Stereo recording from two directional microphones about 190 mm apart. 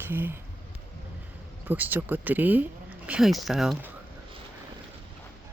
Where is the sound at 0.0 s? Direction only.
10° right (ahead or behind).